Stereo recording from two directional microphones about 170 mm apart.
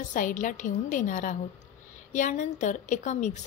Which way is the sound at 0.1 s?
50° left (ahead or behind).